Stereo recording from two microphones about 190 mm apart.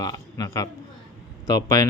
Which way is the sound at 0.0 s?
20° left (ahead or behind).